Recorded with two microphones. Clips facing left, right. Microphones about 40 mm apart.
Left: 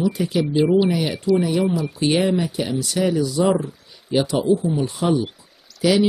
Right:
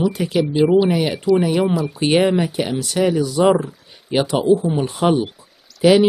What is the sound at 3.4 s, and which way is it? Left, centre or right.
Speech, right.